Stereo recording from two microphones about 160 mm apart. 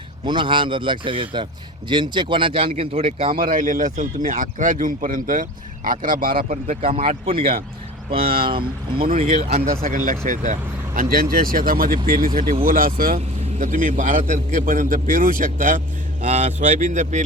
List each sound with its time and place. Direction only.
0.3 s speech: 30° right (ahead or behind)
3.3 s speech: 60° right (ahead or behind)
7.3 s speech: 35° right (ahead or behind)
8.2 s speech: 65° right (ahead or behind)
9.1 s speech: 40° right (ahead or behind)
9.8 s speech: 55° right (ahead or behind)
13.1 s speech: 55° right (ahead or behind)